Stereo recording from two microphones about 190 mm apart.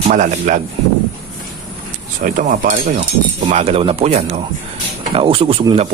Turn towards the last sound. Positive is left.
turn(degrees=-30)  # may be behind; listen again after turning